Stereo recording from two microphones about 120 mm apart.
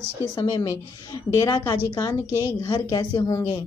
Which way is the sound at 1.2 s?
25° left (ahead or behind).